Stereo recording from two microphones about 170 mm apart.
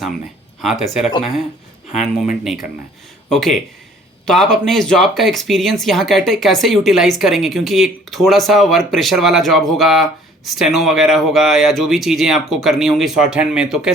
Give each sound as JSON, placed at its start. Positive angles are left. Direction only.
{"t": 0.6, "sound": "speech", "side_deg": 0}
{"t": 2.0, "sound": "speech", "side_deg": 45}
{"t": 3.2, "sound": "speech", "side_deg": 0}